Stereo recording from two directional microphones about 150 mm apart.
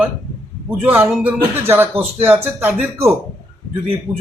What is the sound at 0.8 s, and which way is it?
Speech, 15° right (ahead or behind).